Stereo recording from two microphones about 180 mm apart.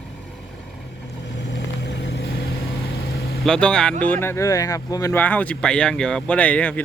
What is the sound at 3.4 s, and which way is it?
Speech, 5° left (ahead or behind).